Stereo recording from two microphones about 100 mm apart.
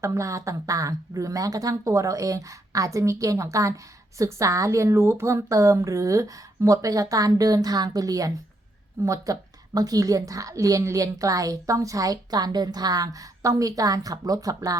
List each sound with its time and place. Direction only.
0.0 s a woman's voice: 30° right (ahead or behind)